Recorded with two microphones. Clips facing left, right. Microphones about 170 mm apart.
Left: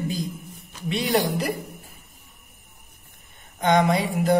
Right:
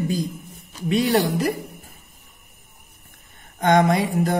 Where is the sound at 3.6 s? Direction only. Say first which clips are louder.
Right 2 dB; 45° right (ahead or behind).